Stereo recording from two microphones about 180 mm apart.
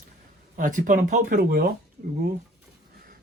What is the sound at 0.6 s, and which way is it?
Speech, 45° right (ahead or behind).